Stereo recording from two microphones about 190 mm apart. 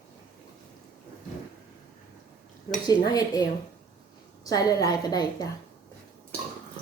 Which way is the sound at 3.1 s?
20° left (ahead or behind).